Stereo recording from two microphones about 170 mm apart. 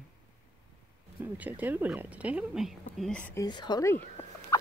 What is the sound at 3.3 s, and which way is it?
Speech, 25° left (ahead or behind).